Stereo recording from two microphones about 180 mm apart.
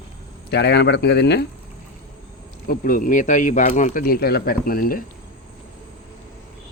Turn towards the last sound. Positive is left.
turn(degrees=55)  # may be behind; listen again after turning